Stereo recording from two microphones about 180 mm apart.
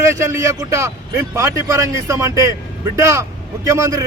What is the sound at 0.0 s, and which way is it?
Speech, 15° right (ahead or behind).